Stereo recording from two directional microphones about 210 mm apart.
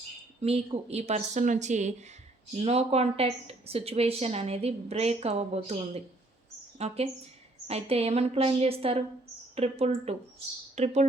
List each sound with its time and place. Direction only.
0.4 s a woman's voice: 30° right (ahead or behind)